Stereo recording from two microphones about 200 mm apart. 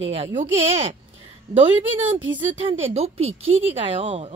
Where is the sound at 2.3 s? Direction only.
30° right (ahead or behind).